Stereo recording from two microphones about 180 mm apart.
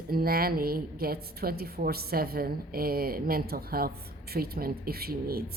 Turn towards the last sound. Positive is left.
turn(degrees=-55)  # may be behind; listen again after turning